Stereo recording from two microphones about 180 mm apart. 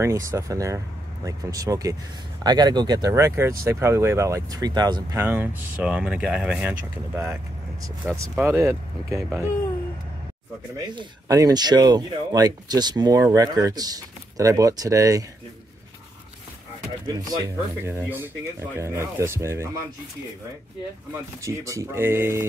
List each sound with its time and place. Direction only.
0.0 s speech: 15° right (ahead or behind)
5.2 s speech: 10° right (ahead or behind)
8.0 s speech: 10° right (ahead or behind)
11.0 s speech: 20° right (ahead or behind)
17.8 s speech: 15° right (ahead or behind)
21.4 s speech: 15° right (ahead or behind)